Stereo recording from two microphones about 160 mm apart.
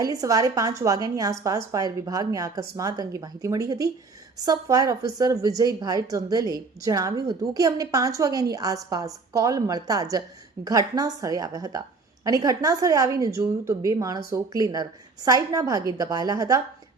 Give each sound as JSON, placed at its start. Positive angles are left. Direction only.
{"t": 0.0, "sound": "a woman's voice", "side_deg": -20}